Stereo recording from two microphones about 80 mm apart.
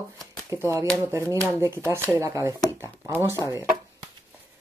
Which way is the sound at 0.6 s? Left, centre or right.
Right.